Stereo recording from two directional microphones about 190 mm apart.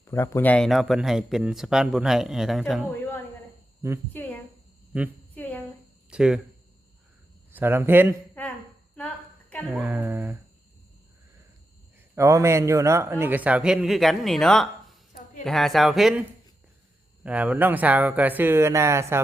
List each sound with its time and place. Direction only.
0.0 s speech: 15° left (ahead or behind)
2.8 s a sound: 10° left (ahead or behind)
4.1 s a woman's voice: 10° left (ahead or behind)
4.9 s a man's voice: 5° right (ahead or behind)
5.3 s a sound: 10° left (ahead or behind)
6.1 s speech: 5° right (ahead or behind)
7.5 s a man's voice: 10° right (ahead or behind)
9.0 s a sound: 10° left (ahead or behind)
9.6 s a man's voice: 10° right (ahead or behind)
12.1 s a man's voice: 15° right (ahead or behind)
17.2 s a man's voice: 5° right (ahead or behind)